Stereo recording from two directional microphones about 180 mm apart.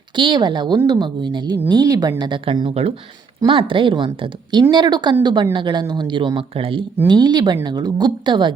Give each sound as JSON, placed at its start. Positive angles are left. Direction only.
{"t": 0.2, "sound": "a woman's voice", "side_deg": -25}